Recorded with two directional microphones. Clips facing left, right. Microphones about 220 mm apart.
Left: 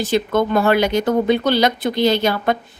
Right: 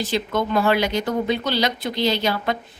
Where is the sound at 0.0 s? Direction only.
50° left (ahead or behind).